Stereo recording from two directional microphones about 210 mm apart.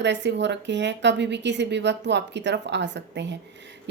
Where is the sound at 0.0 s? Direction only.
55° right (ahead or behind).